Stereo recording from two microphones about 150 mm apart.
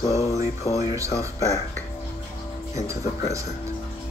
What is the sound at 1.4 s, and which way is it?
Speech, 20° left (ahead or behind).